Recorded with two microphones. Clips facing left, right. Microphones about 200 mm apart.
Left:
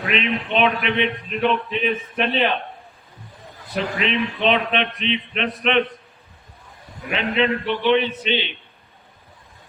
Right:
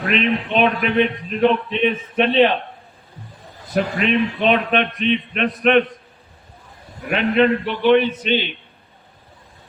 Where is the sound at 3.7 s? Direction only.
45° right (ahead or behind).